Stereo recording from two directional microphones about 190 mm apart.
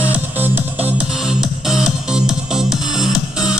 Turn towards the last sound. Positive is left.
turn(degrees=-5)  # may be behind; listen again after turning